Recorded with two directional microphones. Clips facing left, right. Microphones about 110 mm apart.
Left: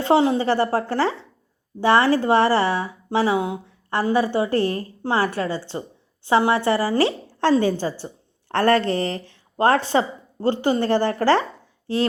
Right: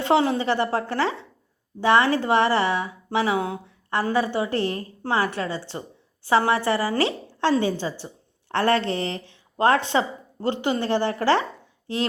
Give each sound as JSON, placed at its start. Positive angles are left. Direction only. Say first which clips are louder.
{"t": 0.0, "sound": "a woman's voice", "louder": "left 3 dB", "side_deg": 25}
{"t": 0.3, "sound": "speech", "louder": "left 3 dB", "side_deg": 40}
{"t": 3.4, "sound": "a woman's voice", "louder": "left 2 dB", "side_deg": 20}
{"t": 7.6, "sound": "a woman's voice", "louder": "left 3 dB", "side_deg": 45}